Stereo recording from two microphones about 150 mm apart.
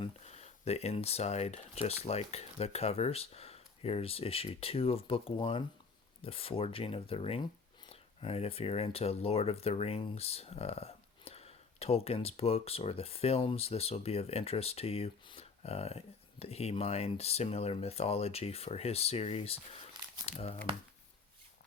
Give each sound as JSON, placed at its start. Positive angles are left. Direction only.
{"t": 0.0, "sound": "speech", "side_deg": 45}